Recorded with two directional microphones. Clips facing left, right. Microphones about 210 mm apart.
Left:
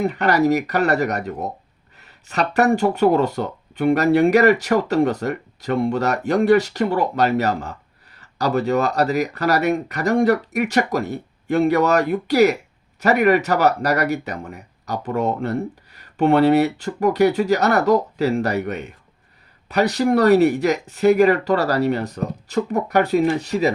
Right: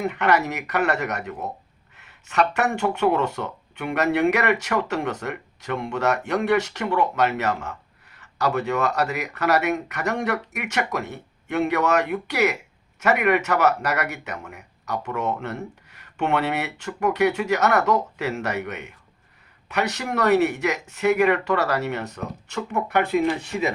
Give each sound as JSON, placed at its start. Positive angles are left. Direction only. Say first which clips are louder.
{"t": 0.0, "sound": "speech", "louder": "left 4 dB", "side_deg": 35}